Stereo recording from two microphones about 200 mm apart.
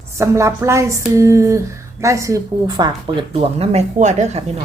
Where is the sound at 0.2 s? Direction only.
15° right (ahead or behind); by 4.4 s 35° right (ahead or behind).